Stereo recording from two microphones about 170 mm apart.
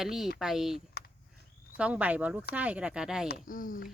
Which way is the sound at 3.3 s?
55° left (ahead or behind).